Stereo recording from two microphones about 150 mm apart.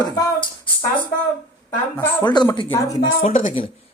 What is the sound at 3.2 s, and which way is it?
Speech, 60° left (ahead or behind).